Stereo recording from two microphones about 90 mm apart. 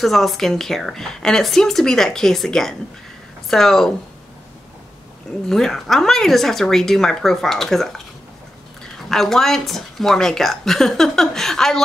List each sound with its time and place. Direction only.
0.0 s speech: centre (ahead or behind)
5.5 s speech: 5° left (ahead or behind)
9.1 s speech: 5° left (ahead or behind)